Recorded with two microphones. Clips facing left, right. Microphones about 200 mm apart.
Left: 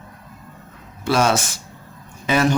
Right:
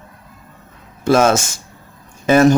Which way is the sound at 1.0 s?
45° right (ahead or behind).